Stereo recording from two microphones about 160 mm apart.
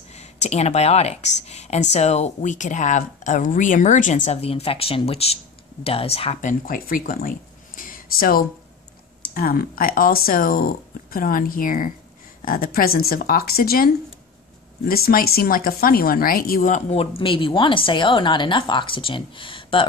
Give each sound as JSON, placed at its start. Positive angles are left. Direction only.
{"t": 0.4, "sound": "speech", "side_deg": 45}
{"t": 6.4, "sound": "speech", "side_deg": 60}
{"t": 14.9, "sound": "speech", "side_deg": 65}